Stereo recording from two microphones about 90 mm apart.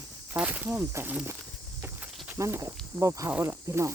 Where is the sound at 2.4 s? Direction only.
30° right (ahead or behind).